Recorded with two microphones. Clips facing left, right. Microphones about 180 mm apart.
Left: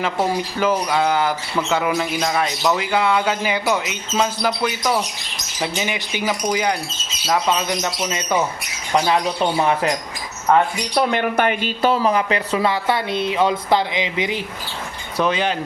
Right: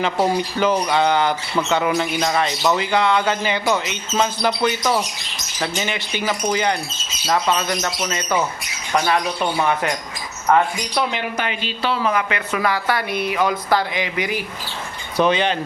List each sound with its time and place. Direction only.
0.3 s a sound: 5° left (ahead or behind)
5.5 s speech: 10° left (ahead or behind)
8.9 s speech: 25° left (ahead or behind)
11.1 s speech: 55° left (ahead or behind)
12.1 s speech: 30° left (ahead or behind)
15.2 s a sound: 5° left (ahead or behind)